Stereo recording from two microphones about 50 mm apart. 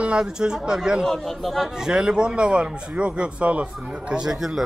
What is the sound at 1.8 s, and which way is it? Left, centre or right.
Speech, centre.